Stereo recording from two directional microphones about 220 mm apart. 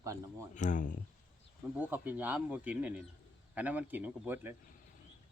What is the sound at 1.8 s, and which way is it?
A man's voice, 10° right (ahead or behind).